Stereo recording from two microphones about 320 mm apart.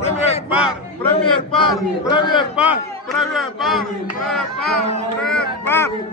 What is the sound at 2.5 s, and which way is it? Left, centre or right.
A man's voice, centre.